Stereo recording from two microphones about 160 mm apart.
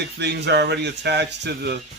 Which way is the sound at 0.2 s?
90° right.